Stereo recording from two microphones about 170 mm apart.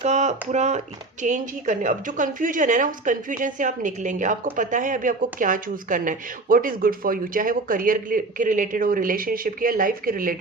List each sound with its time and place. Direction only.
0.0 s a woman's voice: 40° right (ahead or behind)